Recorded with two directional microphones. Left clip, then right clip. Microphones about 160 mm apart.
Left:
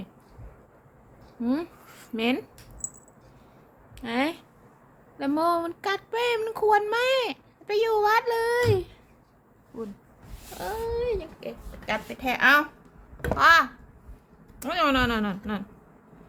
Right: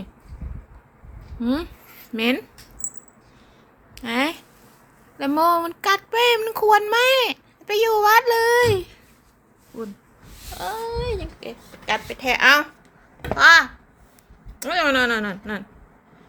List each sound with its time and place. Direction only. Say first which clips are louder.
1.4 s speech: right 4 dB; 5° right (ahead or behind)
1.9 s a sound: right 2 dB; 25° left (ahead or behind)
2.1 s a child's voice: right 5 dB; 15° right (ahead or behind)
3.9 s a child's voice: right 4 dB; centre (ahead or behind)
10.6 s speech: right 3 dB; 15° left (ahead or behind)
10.9 s a child's voice: right 1 dB; centre (ahead or behind)
11.2 s a child's voice: right 2 dB; 20° right (ahead or behind)
13.3 s a child's voice: right 6 dB; centre (ahead or behind)